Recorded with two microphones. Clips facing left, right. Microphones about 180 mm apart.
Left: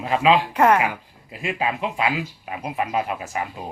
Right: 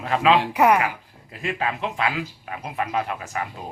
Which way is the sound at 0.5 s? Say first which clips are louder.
Left 1 dB; 10° right (ahead or behind).